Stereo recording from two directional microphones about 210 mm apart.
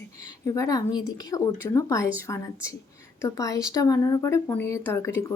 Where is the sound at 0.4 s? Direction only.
15° left (ahead or behind).